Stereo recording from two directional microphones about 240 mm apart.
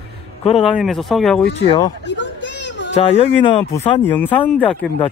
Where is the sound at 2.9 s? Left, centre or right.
Left.